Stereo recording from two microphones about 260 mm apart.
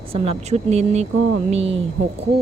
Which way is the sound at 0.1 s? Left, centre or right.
Right.